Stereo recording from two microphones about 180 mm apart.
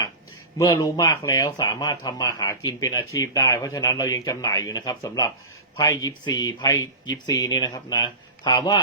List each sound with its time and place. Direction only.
0.6 s speech: 20° left (ahead or behind)